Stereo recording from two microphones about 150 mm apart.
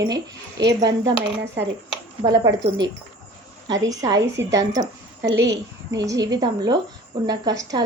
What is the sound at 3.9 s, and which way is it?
A woman's voice, 25° right (ahead or behind).